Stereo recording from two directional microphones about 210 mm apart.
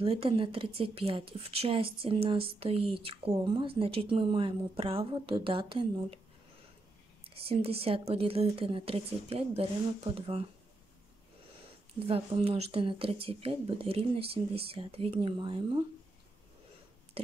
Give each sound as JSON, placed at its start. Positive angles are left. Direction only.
{"t": 0.0, "sound": "a woman's voice", "side_deg": -25}
{"t": 7.2, "sound": "a woman's voice", "side_deg": -25}
{"t": 12.1, "sound": "a woman's voice", "side_deg": -30}